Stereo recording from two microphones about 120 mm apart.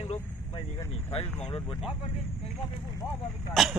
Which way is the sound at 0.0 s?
55° left (ahead or behind).